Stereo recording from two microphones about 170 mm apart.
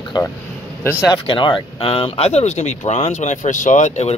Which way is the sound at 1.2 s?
30° left (ahead or behind).